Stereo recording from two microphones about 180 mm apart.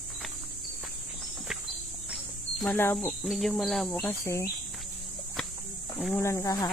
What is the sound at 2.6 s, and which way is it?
Speech, 10° left (ahead or behind).